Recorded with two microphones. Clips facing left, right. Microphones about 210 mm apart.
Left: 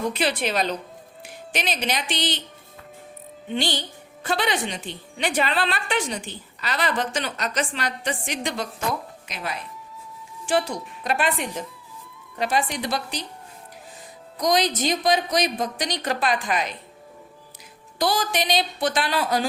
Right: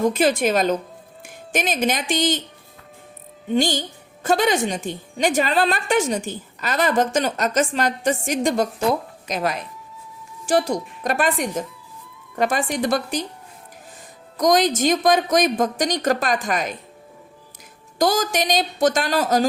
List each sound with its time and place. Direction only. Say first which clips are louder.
0.0 s a woman's voice: right 6 dB; 45° right (ahead or behind)
3.5 s a woman's voice: right 6 dB; 45° right (ahead or behind)
14.3 s a woman's voice: right 4 dB; 45° right (ahead or behind)
18.0 s a woman's voice: right 4 dB; 45° right (ahead or behind)